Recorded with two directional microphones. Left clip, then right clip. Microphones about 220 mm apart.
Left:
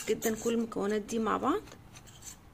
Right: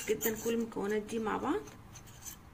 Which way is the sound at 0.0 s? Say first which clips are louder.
Left 2 dB; 40° left (ahead or behind).